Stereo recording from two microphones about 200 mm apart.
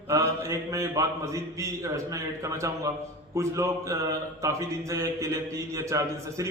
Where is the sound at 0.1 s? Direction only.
15° right (ahead or behind).